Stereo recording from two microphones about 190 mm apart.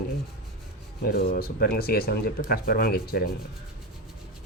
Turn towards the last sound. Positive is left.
turn(degrees=55)  # may be behind; listen again after turning